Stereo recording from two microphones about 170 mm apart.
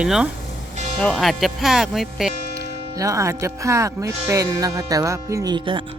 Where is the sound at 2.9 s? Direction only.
20° right (ahead or behind).